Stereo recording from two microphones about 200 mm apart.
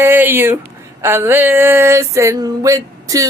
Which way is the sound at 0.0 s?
10° right (ahead or behind).